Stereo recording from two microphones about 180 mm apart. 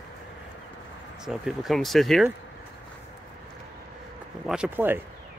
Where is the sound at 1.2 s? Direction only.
Centre (ahead or behind).